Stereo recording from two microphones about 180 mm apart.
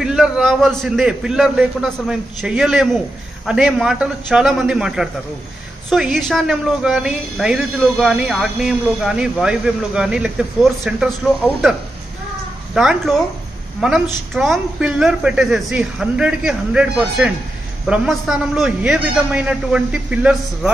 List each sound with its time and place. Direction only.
0.0 s speech: 5° right (ahead or behind)
12.7 s speech: centre (ahead or behind)